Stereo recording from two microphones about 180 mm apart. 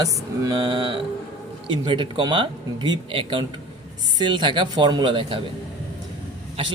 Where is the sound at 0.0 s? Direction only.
25° right (ahead or behind).